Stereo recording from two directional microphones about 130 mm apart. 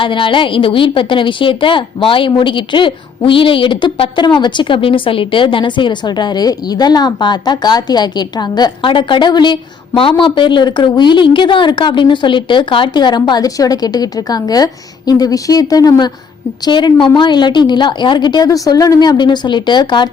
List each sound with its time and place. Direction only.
0.0 s a woman's voice: 40° left (ahead or behind)